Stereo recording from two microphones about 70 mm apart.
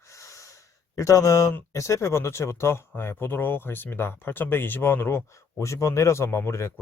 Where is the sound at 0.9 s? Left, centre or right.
Left.